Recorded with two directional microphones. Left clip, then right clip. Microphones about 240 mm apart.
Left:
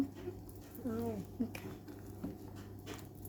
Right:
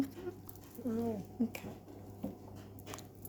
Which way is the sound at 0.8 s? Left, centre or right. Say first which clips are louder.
Right 2 dB; centre.